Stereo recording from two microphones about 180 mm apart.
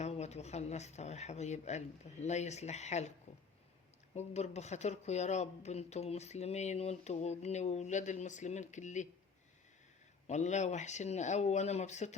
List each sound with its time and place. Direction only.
0.0 s speech: 35° left (ahead or behind)
4.1 s speech: 40° left (ahead or behind)
10.2 s speech: 40° left (ahead or behind)